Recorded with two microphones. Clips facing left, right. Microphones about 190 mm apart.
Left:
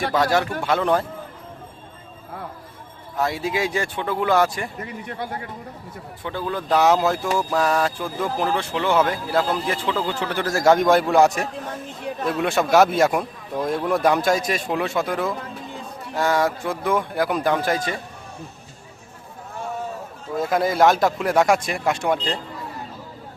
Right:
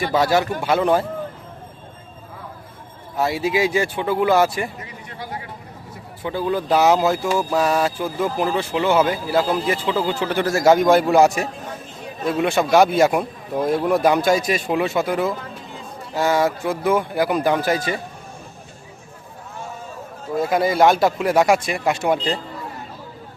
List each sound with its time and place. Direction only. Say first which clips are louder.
0.1 s speech: right 3 dB; 5° right (ahead or behind)
3.2 s speech: right 4 dB; 5° right (ahead or behind)
4.8 s speech: left 4 dB; 55° left (ahead or behind)
6.2 s speech: right 5 dB; 10° right (ahead or behind)
20.3 s speech: right 2 dB; centre (ahead or behind)